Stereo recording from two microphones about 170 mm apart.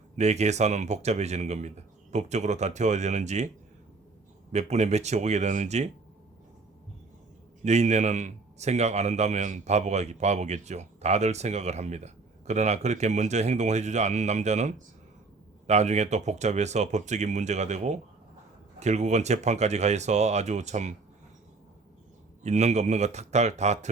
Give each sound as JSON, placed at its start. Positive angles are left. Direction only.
{"t": 0.2, "sound": "a man's voice", "side_deg": -40}
{"t": 4.5, "sound": "a man's voice", "side_deg": -40}
{"t": 7.6, "sound": "a man's voice", "side_deg": -40}
{"t": 22.4, "sound": "a man's voice", "side_deg": -40}